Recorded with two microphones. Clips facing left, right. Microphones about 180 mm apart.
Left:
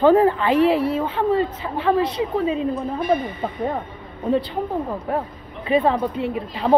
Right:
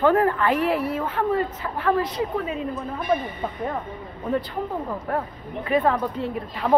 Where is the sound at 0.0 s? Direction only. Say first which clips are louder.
Left 4 dB; 30° left (ahead or behind).